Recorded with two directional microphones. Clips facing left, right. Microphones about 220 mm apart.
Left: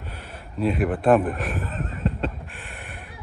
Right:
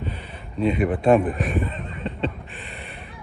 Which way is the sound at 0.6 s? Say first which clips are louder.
Right 1 dB; centre (ahead or behind).